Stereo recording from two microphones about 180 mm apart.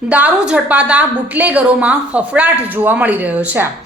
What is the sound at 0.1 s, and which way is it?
A woman's voice, 5° right (ahead or behind).